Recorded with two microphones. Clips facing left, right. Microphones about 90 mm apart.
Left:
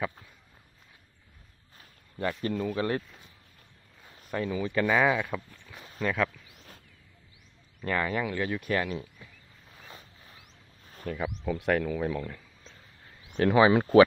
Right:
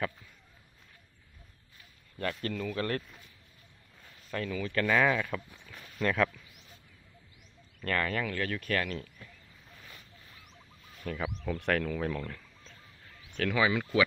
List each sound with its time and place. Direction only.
2.1 s speech: 15° left (ahead or behind)
4.3 s speech: 20° left (ahead or behind)
5.9 s speech: centre (ahead or behind)
7.8 s speech: 15° left (ahead or behind)
9.8 s boat: 30° left (ahead or behind)
11.1 s speech: 10° left (ahead or behind)
13.2 s speech: 25° left (ahead or behind)